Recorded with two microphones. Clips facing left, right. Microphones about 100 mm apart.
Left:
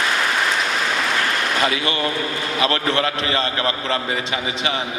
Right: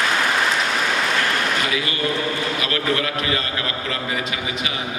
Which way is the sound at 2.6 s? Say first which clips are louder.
Left 7 dB; 30° left (ahead or behind).